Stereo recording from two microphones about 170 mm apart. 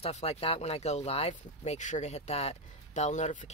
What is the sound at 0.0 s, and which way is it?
Speech, 35° left (ahead or behind).